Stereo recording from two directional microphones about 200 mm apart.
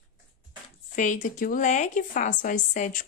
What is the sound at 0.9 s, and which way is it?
Speech, 40° left (ahead or behind).